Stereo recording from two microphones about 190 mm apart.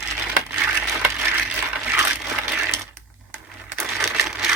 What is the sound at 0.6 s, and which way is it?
Crushing, 5° right (ahead or behind).